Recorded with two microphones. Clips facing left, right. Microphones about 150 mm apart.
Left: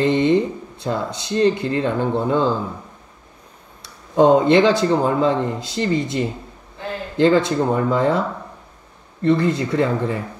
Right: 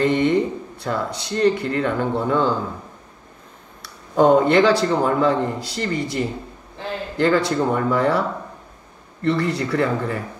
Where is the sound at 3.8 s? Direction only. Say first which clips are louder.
Left 1 dB; 20° left (ahead or behind).